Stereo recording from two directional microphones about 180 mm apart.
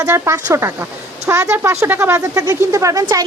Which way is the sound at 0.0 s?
15° right (ahead or behind).